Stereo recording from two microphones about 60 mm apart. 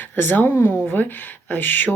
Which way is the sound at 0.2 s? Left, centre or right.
Left.